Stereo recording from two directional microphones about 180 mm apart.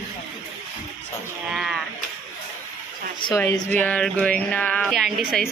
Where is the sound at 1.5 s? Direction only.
Centre (ahead or behind).